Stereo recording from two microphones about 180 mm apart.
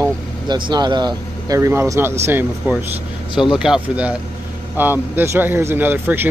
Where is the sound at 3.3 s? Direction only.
25° left (ahead or behind).